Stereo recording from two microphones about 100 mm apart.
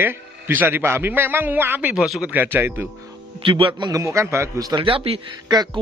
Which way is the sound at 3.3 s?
60° right (ahead or behind).